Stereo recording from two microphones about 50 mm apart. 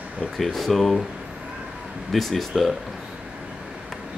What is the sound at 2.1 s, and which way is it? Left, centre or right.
Speech, centre.